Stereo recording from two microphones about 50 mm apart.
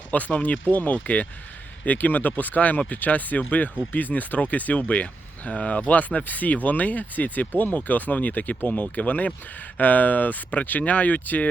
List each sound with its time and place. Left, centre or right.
0.1 s speech: left